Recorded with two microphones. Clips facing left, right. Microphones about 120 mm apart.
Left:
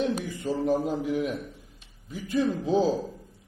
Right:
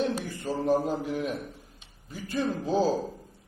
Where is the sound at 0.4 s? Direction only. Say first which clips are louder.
Even; 30° right (ahead or behind).